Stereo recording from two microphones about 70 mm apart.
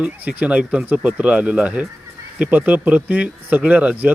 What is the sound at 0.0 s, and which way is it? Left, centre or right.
Speech, centre.